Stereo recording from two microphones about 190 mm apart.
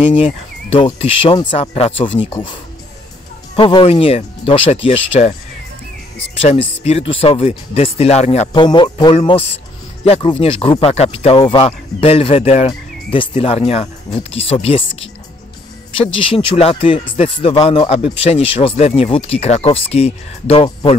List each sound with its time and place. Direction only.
0.1 s speech: 30° left (ahead or behind)
6.4 s speech: 30° left (ahead or behind)
8.6 s speech: 25° left (ahead or behind)
16.1 s speech: 25° left (ahead or behind)